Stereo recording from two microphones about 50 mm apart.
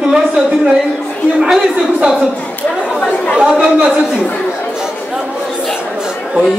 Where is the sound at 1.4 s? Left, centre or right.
Centre.